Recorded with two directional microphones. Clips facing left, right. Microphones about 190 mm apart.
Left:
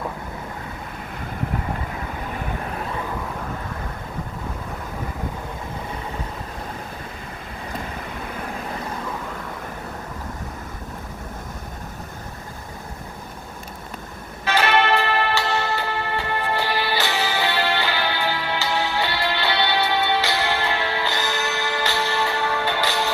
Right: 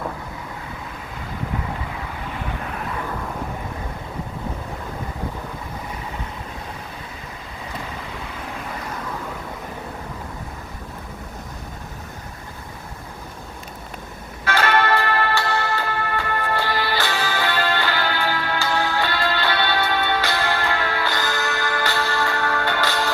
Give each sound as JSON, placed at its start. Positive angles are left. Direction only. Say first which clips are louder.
{"t": 14.4, "sound": "music", "louder": "even", "side_deg": 15}